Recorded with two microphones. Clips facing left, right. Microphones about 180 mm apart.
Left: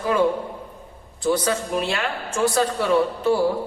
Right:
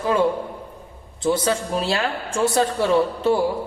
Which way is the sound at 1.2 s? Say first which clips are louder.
Right 1 dB; 25° right (ahead or behind).